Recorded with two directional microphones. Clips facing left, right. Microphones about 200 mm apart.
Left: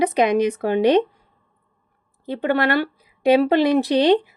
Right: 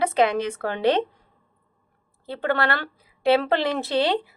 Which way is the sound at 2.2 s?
15° left (ahead or behind).